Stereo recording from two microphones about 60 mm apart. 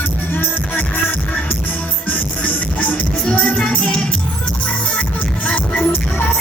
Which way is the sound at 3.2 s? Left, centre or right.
Centre.